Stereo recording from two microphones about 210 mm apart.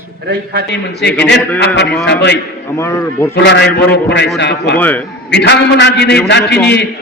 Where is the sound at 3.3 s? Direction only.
55° left (ahead or behind).